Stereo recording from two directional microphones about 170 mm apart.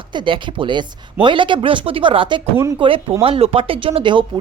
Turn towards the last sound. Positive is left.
turn(degrees=-30)  # may be behind; listen again after turning